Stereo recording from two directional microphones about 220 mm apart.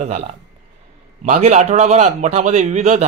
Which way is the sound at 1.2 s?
35° right (ahead or behind).